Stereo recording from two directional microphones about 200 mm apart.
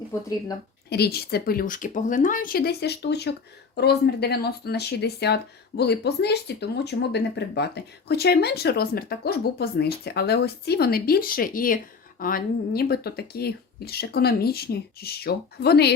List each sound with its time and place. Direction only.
0.9 s speech: 55° left (ahead or behind)